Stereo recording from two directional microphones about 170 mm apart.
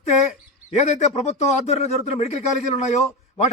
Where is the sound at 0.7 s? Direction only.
40° left (ahead or behind).